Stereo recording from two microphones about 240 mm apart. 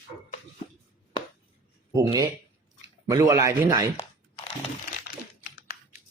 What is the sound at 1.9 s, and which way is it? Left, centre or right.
Speech, centre.